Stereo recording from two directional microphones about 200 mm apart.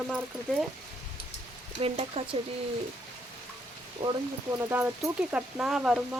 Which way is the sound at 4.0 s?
25° right (ahead or behind).